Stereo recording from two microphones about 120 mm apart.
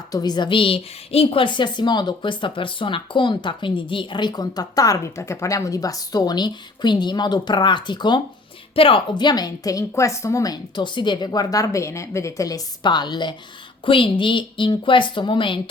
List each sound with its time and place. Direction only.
0.1 s a woman's voice: 35° left (ahead or behind)